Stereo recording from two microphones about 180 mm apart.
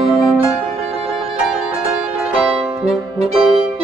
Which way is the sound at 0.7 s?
35° right (ahead or behind).